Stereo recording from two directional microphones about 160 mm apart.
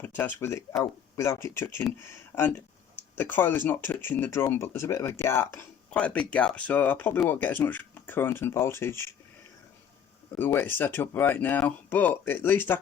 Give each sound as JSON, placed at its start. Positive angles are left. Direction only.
{"t": 0.0, "sound": "speech", "side_deg": 10}
{"t": 10.3, "sound": "speech", "side_deg": 15}